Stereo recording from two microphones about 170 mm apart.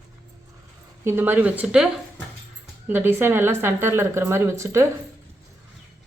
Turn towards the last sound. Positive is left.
turn(degrees=-15)  # may be behind; listen again after turning